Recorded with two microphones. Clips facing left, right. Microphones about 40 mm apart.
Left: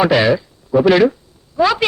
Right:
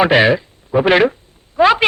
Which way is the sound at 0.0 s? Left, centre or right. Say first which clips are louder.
Right 1 dB; right.